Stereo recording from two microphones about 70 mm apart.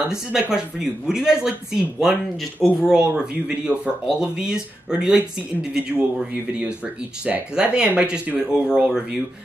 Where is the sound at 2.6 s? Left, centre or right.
Centre.